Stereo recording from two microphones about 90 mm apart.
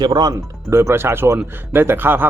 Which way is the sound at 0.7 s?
30° right (ahead or behind).